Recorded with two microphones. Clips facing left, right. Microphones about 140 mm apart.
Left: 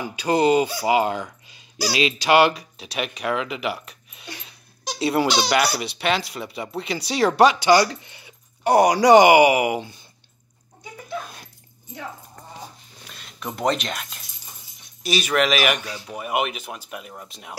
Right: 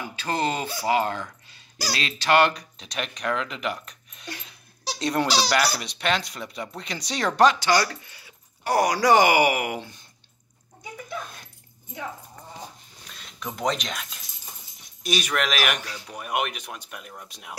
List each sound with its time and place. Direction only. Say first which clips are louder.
0.0 s speech: left 7 dB; 15° left (ahead or behind)
13.0 s a sound: left 3 dB; 5° left (ahead or behind)
15.0 s a man's voice: left 5 dB; centre (ahead or behind)